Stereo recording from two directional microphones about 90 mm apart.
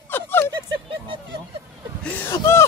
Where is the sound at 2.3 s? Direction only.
30° left (ahead or behind).